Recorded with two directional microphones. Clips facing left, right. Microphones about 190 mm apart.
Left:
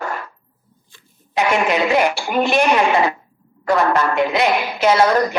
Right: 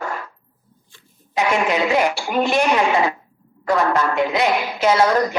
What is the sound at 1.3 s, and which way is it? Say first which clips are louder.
Speech: left 2 dB; 70° left (ahead or behind).